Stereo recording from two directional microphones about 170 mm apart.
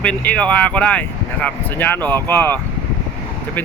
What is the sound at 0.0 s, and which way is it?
Speech, 5° left (ahead or behind).